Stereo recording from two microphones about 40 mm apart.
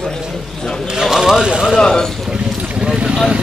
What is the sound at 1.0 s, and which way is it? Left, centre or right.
Speech, centre.